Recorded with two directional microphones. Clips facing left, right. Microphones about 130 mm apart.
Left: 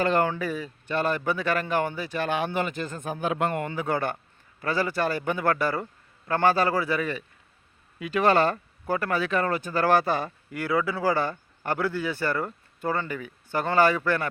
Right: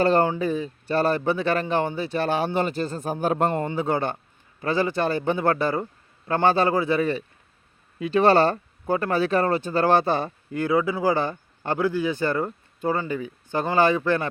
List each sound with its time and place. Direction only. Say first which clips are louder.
0.0 s speech: right 4 dB; 35° right (ahead or behind)
3.5 s speech: right 3 dB; 25° right (ahead or behind)